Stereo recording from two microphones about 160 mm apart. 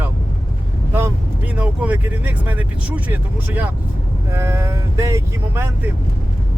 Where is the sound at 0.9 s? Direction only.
15° right (ahead or behind).